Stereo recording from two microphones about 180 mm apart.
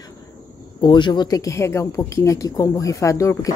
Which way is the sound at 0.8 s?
25° left (ahead or behind).